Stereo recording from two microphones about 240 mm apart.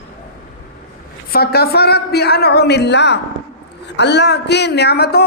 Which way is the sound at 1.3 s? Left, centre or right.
Left.